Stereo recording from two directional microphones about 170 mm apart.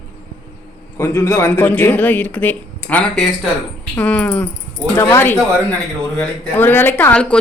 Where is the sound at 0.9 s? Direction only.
15° left (ahead or behind).